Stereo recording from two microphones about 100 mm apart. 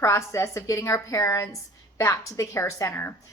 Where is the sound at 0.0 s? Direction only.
30° left (ahead or behind).